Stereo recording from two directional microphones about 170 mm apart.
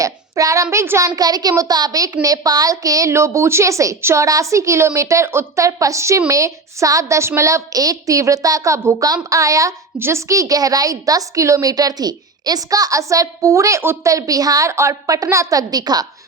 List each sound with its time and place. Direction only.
0.0 s a woman's voice: 20° right (ahead or behind)